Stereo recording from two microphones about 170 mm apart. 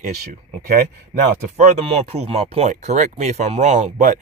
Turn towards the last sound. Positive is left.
turn(degrees=-45)  # may be behind; listen again after turning